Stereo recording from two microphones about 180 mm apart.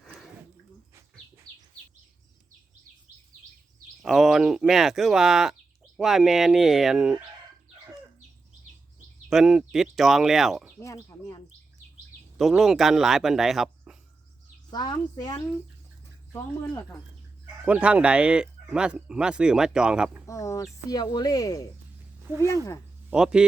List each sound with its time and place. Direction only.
0.0 s a sound: centre (ahead or behind)
4.0 s speech: centre (ahead or behind)
9.3 s speech: centre (ahead or behind)
10.8 s speech: 15° left (ahead or behind)
12.4 s speech: centre (ahead or behind)
14.7 s a woman's voice: 25° left (ahead or behind)
17.7 s speech: 5° right (ahead or behind)
20.2 s a woman's voice: 15° left (ahead or behind)
22.3 s speech: 15° right (ahead or behind)